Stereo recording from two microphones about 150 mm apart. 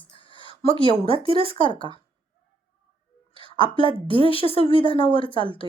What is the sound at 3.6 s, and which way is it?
Speech, 35° left (ahead or behind).